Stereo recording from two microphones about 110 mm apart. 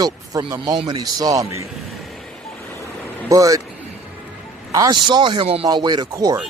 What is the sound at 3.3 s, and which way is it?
Speech, 30° right (ahead or behind).